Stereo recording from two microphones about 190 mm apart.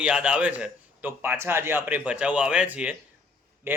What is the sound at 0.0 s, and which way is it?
Speech, 5° right (ahead or behind).